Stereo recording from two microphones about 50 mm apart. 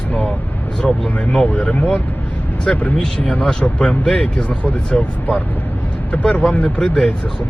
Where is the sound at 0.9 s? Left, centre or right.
Left.